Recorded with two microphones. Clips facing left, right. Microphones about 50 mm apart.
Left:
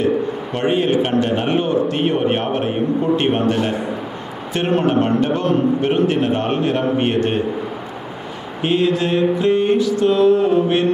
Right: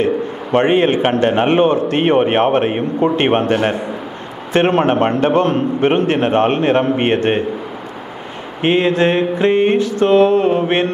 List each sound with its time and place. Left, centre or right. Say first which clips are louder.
0.0 s a man's voice: right 1 dB; right
8.6 s a man's voice: right 4 dB; right